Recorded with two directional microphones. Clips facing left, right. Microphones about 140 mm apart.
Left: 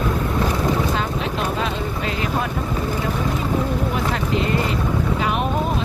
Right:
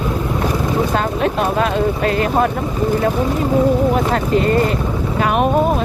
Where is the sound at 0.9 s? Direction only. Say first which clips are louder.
Right 6 dB; 55° right (ahead or behind).